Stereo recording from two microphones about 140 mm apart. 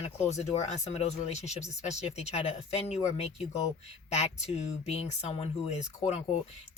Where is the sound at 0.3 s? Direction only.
55° left (ahead or behind).